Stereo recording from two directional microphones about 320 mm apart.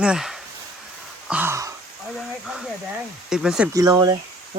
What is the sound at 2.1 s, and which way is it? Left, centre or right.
Snake, centre.